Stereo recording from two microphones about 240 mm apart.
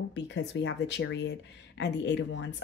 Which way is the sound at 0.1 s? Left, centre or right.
Left.